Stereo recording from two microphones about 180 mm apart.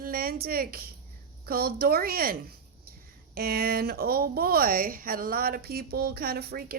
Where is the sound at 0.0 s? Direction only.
55° right (ahead or behind).